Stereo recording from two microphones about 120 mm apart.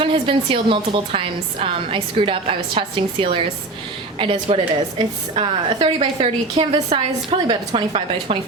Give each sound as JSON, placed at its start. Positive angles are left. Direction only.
{"t": 0.0, "sound": "a woman's voice", "side_deg": -45}